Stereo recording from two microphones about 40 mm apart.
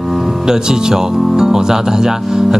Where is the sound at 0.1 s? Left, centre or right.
Centre.